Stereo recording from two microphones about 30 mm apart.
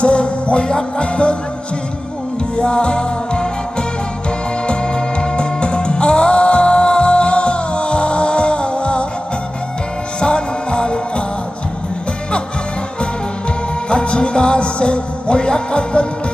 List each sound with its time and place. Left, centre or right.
0.0 s music: left
2.6 s music: left
10.2 s music: left
13.9 s music: left